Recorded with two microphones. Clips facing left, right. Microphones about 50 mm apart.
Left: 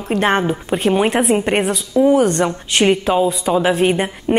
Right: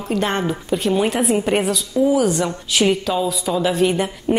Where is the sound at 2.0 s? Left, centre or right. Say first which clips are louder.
Left 4 dB; centre.